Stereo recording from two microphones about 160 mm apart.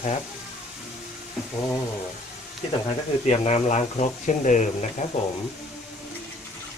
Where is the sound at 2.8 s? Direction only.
45° left (ahead or behind).